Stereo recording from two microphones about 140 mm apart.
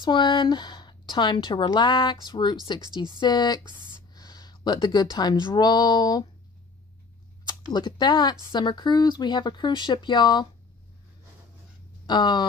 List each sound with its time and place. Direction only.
0.0 s speech: 30° left (ahead or behind)
7.4 s speech: 30° left (ahead or behind)
12.1 s speech: 30° left (ahead or behind)